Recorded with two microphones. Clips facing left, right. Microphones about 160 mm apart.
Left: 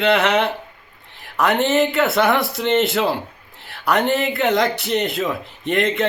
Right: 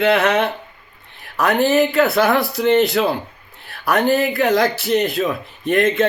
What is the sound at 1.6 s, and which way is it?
Speech, 25° left (ahead or behind).